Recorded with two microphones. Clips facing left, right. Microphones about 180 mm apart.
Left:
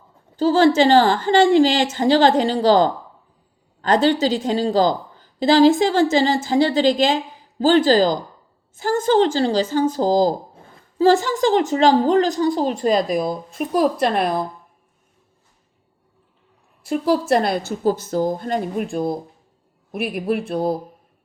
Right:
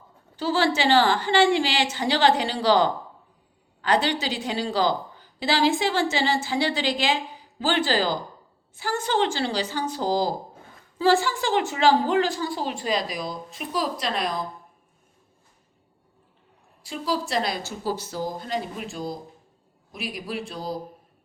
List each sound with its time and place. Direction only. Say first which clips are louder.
0.3 s a woman's voice: left 9 dB; 40° left (ahead or behind)
12.8 s a woman's voice: left 10 dB; 50° left (ahead or behind)
16.8 s a woman's voice: left 9 dB; 55° left (ahead or behind)